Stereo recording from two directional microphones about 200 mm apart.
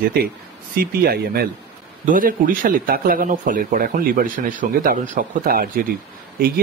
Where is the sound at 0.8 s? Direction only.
50° right (ahead or behind).